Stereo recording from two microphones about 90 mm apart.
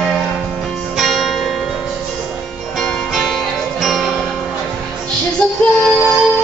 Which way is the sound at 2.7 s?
Centre (ahead or behind).